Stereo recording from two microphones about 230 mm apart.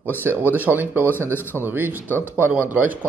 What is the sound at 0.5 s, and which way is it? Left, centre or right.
Speech, centre.